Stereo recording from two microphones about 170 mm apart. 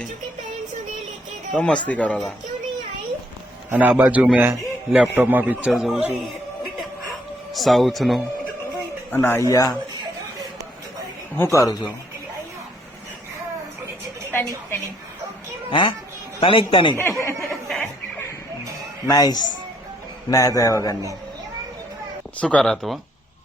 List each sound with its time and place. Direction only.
1.5 s speech: 5° left (ahead or behind)
3.7 s a man's voice: 10° right (ahead or behind)
9.0 s speech: 10° left (ahead or behind)
11.3 s a man's voice: 15° left (ahead or behind)
15.7 s a man's voice: 30° left (ahead or behind)
16.9 s speech: 15° left (ahead or behind)
17.5 s chuckle: centre (ahead or behind)
19.0 s a man's voice: 20° left (ahead or behind)
22.4 s speech: 5° left (ahead or behind)